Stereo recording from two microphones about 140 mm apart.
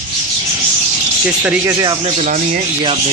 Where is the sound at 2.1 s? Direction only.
65° right (ahead or behind).